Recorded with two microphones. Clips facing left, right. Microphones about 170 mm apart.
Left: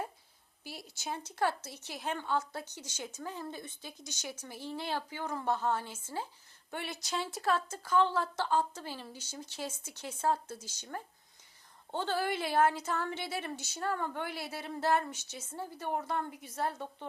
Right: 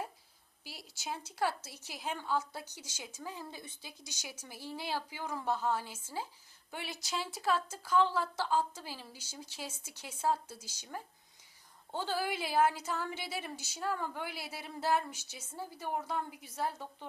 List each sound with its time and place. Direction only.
0.9 s a woman's voice: 5° right (ahead or behind)